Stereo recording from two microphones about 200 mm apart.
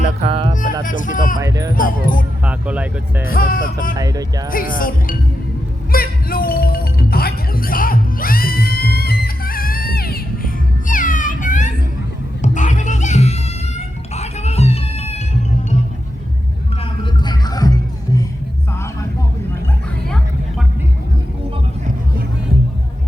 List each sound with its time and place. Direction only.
0.2 s speech: 30° right (ahead or behind)
0.9 s speech: 40° left (ahead or behind)
1.4 s speech: 15° right (ahead or behind)
1.7 s speech: 45° left (ahead or behind)
2.4 s speech: 5° right (ahead or behind)
3.2 s speech: 45° left (ahead or behind)
3.9 s speech: 15° right (ahead or behind)
4.4 s speech: 45° left (ahead or behind)
5.9 s music: 45° left (ahead or behind); by 15.2 s 30° left (ahead or behind)
17.0 s music: 20° left (ahead or behind)